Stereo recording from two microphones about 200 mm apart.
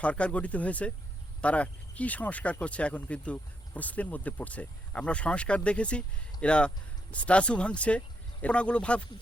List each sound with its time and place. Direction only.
0.0 s speech: 5° left (ahead or behind)